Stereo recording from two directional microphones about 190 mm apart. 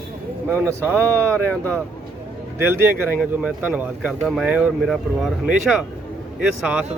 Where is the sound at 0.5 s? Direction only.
10° right (ahead or behind).